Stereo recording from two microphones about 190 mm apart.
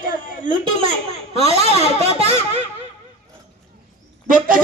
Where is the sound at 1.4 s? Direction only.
30° right (ahead or behind).